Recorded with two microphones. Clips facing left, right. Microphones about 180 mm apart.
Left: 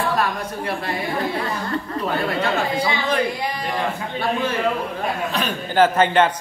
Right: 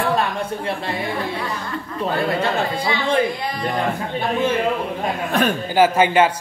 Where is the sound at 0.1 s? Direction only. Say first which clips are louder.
Right 2 dB; 25° right (ahead or behind).